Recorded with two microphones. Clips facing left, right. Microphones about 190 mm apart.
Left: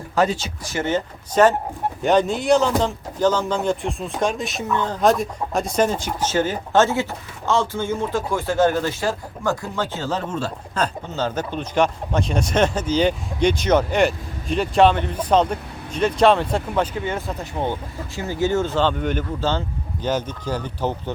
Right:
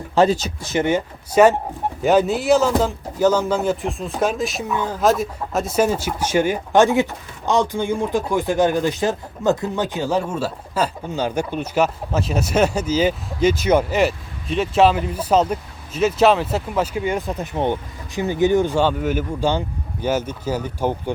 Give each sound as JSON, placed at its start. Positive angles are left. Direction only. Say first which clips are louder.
{"t": 0.2, "sound": "speech", "louder": "right 4 dB", "side_deg": -40}
{"t": 0.6, "sound": "speech", "louder": "right 2 dB", "side_deg": -20}